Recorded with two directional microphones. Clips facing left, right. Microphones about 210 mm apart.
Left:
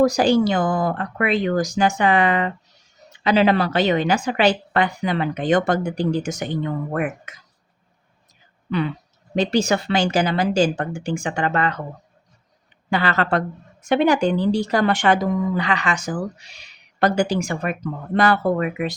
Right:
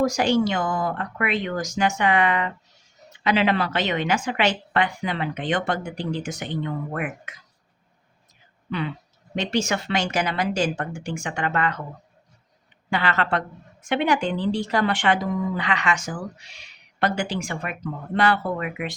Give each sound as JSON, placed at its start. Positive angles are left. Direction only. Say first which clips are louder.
{"t": 0.0, "sound": "speech", "louder": "left 4 dB", "side_deg": 35}
{"t": 9.3, "sound": "speech", "louder": "left 5 dB", "side_deg": 35}
{"t": 12.9, "sound": "speech", "louder": "left 3 dB", "side_deg": 40}